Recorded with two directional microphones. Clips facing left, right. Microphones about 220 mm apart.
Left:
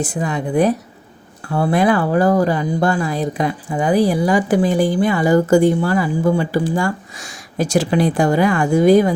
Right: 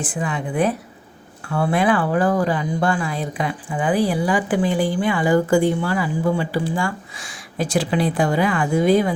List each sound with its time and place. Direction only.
0.0 s speech: 40° left (ahead or behind)